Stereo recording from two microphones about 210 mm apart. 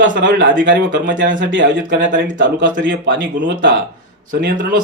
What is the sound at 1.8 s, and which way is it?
Speech, 60° right (ahead or behind).